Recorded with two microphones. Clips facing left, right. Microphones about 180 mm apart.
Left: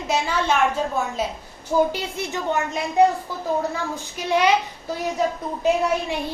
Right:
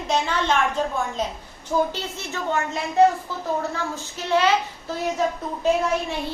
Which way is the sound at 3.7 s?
15° left (ahead or behind).